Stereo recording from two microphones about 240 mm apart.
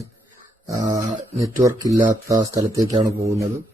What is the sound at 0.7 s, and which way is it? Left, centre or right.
Speech, centre.